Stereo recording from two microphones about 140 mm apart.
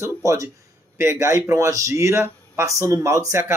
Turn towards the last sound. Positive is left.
turn(degrees=-20)  # may be behind; listen again after turning